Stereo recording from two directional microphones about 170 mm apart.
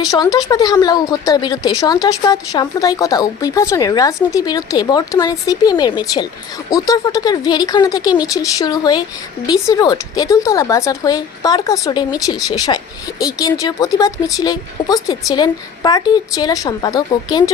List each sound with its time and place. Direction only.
0.0 s speech: 20° left (ahead or behind)